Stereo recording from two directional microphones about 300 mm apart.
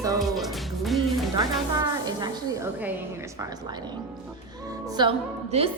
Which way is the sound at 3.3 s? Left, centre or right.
Centre.